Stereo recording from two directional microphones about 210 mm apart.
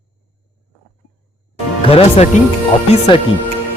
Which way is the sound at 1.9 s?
30° left (ahead or behind).